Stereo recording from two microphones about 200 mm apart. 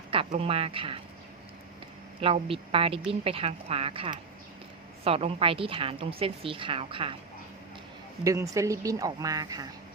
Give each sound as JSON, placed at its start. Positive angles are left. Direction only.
{"t": 0.1, "sound": "speech", "side_deg": -30}
{"t": 2.2, "sound": "a woman's voice", "side_deg": -30}
{"t": 8.2, "sound": "speech", "side_deg": -15}